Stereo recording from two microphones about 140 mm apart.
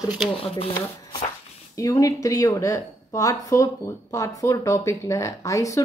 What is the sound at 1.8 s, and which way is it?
Speech, 25° left (ahead or behind).